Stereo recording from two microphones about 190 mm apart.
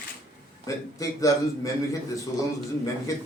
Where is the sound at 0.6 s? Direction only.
20° left (ahead or behind).